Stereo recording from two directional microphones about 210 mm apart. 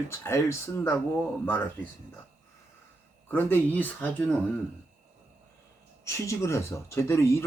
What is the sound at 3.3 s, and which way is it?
Speech, 10° left (ahead or behind).